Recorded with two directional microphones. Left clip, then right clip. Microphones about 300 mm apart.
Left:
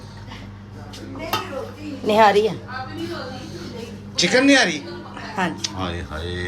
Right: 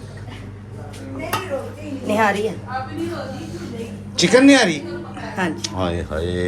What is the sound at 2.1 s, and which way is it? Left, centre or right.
Speech, left.